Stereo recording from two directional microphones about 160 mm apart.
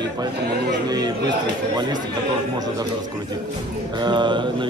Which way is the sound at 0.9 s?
25° right (ahead or behind).